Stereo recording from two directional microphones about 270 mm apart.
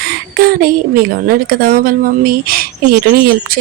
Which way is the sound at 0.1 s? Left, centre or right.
Right.